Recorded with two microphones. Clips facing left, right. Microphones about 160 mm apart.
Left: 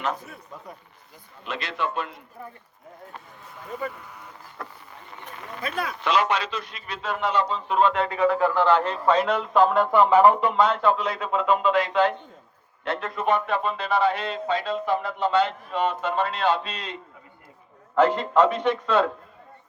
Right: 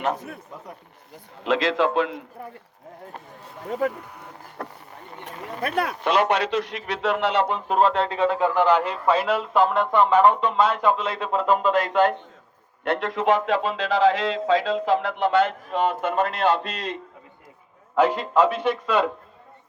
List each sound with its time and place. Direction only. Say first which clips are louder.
0.0 s a man's voice: right 3 dB; 60° right (ahead or behind)
1.5 s a man's voice: right 9 dB; 90° right
3.7 s a man's voice: right 7 dB; 75° right (ahead or behind)
4.1 s a sound: right 2 dB; 50° right (ahead or behind)
5.6 s a man's voice: right 3 dB; 65° right (ahead or behind)
7.8 s a man's voice: right 1 dB; 35° right (ahead or behind); by 10.5 s 10° left (ahead or behind)
10.8 s speech: even; 20° right (ahead or behind); by 12.1 s 50° right (ahead or behind)
12.8 s a man's voice: right 4 dB; 70° right (ahead or behind); by 16.7 s 50° right (ahead or behind)
17.9 s a man's voice: even; 10° right (ahead or behind)